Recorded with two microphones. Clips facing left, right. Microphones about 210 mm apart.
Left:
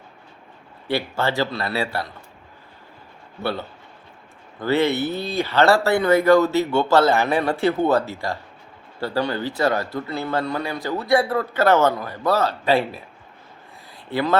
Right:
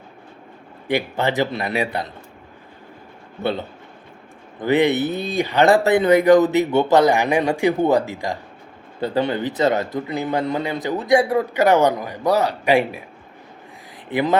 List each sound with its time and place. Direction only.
0.9 s speech: 15° right (ahead or behind)
3.4 s a man's voice: 20° right (ahead or behind)
14.1 s speech: 15° right (ahead or behind)